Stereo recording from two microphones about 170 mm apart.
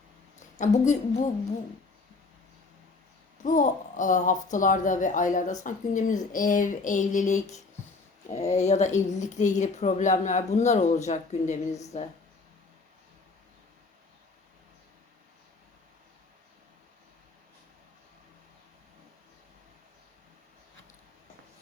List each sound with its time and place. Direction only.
0.6 s a woman's voice: 45° left (ahead or behind)
3.4 s a woman's voice: 50° left (ahead or behind)